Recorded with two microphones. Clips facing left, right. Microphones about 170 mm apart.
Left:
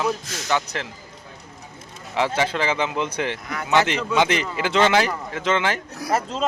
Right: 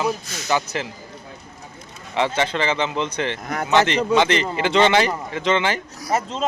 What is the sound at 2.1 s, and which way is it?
A man's voice, 5° left (ahead or behind).